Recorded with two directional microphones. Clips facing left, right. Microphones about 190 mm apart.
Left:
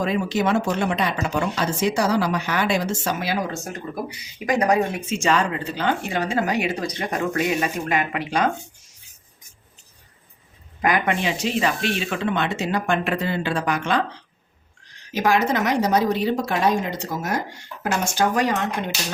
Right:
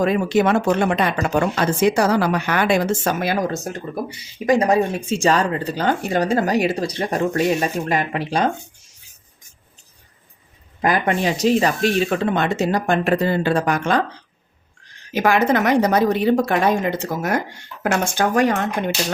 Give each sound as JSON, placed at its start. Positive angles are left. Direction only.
{"t": 0.0, "sound": "speech", "side_deg": -55}
{"t": 4.4, "sound": "speech", "side_deg": -25}
{"t": 10.8, "sound": "speech", "side_deg": -35}
{"t": 15.1, "sound": "speech", "side_deg": -55}